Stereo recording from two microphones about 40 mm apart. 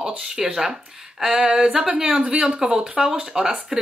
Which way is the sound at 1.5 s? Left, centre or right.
Right.